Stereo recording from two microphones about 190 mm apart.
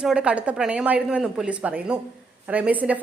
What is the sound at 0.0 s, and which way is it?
A woman's voice, 5° right (ahead or behind).